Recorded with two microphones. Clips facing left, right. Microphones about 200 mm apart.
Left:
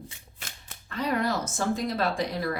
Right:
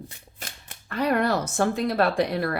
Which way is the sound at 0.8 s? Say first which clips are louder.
Right 4 dB; 65° right (ahead or behind).